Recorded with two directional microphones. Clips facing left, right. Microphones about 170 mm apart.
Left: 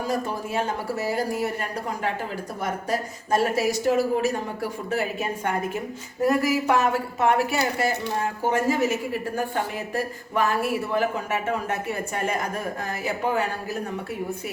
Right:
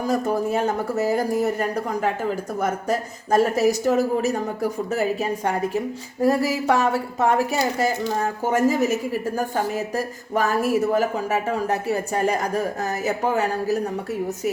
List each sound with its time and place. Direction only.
0.1 s speech: 45° right (ahead or behind)
1.5 s a woman's voice: 45° right (ahead or behind)